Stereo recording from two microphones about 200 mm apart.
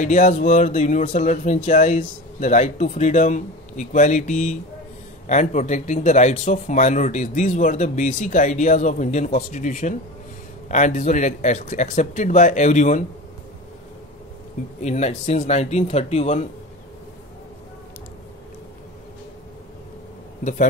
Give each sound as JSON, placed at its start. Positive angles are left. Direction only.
{"t": 0.0, "sound": "speech", "side_deg": 40}
{"t": 14.8, "sound": "speech", "side_deg": 35}